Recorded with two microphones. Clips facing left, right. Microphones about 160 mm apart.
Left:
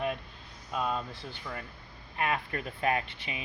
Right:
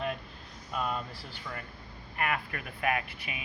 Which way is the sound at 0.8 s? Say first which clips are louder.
Left 2 dB; 20° left (ahead or behind).